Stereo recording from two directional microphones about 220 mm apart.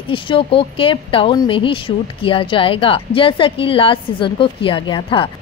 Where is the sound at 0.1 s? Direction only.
25° left (ahead or behind).